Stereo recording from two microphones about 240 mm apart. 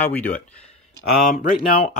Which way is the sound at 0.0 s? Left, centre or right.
Centre.